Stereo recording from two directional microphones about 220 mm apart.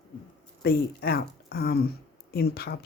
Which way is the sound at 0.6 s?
45° left (ahead or behind).